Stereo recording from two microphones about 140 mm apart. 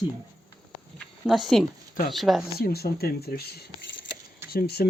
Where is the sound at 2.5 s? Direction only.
90° left.